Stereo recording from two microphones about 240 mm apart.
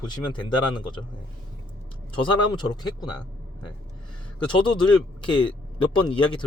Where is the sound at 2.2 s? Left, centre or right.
Centre.